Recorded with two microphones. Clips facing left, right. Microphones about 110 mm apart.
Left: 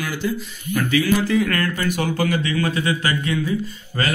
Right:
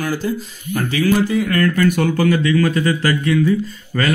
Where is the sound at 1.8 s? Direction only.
50° right (ahead or behind).